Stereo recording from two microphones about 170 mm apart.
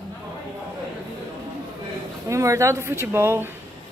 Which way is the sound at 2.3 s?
15° right (ahead or behind).